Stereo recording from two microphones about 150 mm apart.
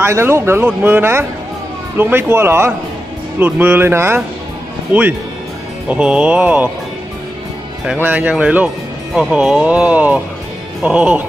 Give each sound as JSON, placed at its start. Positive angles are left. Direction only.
{"t": 0.0, "sound": "speech", "side_deg": -15}
{"t": 5.9, "sound": "speech", "side_deg": -5}
{"t": 7.8, "sound": "speech", "side_deg": -5}